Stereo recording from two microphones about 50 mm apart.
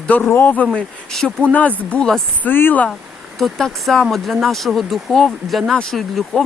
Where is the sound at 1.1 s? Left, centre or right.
Centre.